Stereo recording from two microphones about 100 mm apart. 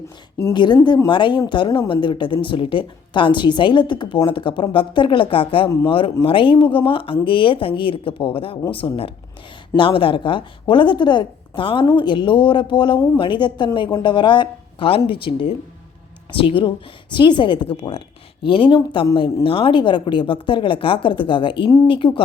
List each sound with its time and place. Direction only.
0.5 s a woman's voice: 50° left (ahead or behind)